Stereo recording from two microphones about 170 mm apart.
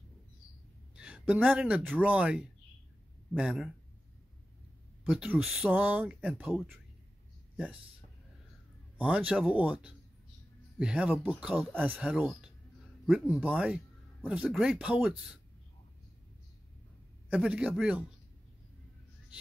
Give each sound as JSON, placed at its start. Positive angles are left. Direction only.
{"t": 0.9, "sound": "speech", "side_deg": -5}
{"t": 5.0, "sound": "speech", "side_deg": -5}
{"t": 8.9, "sound": "speech", "side_deg": -10}
{"t": 17.3, "sound": "speech", "side_deg": -5}